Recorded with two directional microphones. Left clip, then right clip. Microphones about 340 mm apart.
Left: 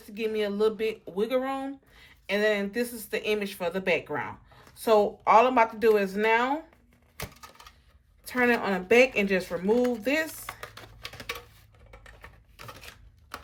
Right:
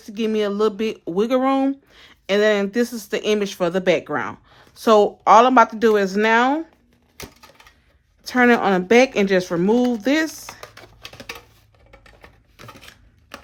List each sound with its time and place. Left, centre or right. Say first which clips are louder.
0.1 s speech: right 7 dB; centre
8.3 s speech: right 9 dB; centre
10.4 s typing: right 3 dB; centre
11.9 s a sound: right 3 dB; centre